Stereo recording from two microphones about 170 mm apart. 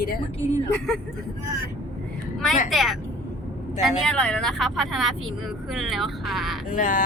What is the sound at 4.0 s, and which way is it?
Speech, 5° left (ahead or behind).